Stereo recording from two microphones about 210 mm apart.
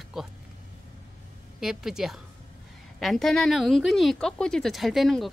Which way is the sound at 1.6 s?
Centre (ahead or behind).